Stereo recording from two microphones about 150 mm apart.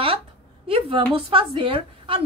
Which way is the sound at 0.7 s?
40° right (ahead or behind).